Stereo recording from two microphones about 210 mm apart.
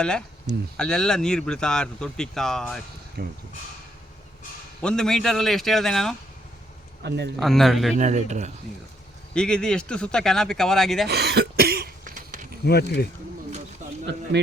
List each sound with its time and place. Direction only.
0.0 s speech: 5° left (ahead or behind)
3.2 s speech: 45° right (ahead or behind)
4.8 s speech: 5° left (ahead or behind)
7.3 s speech: centre (ahead or behind)
7.9 s speech: 35° right (ahead or behind)
9.3 s speech: 5° left (ahead or behind)
11.1 s cough: 50° right (ahead or behind)
12.6 s speech: 50° left (ahead or behind)